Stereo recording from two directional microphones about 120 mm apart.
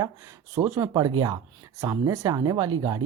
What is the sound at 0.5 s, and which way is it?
Speech, 25° right (ahead or behind).